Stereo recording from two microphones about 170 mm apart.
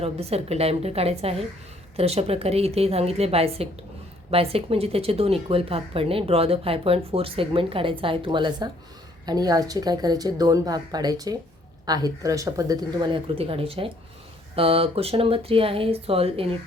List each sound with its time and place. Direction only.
0.0 s speech: 35° right (ahead or behind)